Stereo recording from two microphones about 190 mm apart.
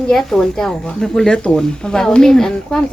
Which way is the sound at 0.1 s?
5° left (ahead or behind).